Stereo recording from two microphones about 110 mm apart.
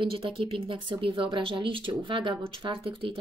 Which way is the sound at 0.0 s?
55° right (ahead or behind).